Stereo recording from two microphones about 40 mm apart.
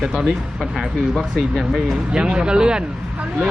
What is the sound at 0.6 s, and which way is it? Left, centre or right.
Speech, centre.